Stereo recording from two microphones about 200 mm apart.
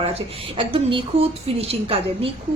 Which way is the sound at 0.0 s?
25° right (ahead or behind).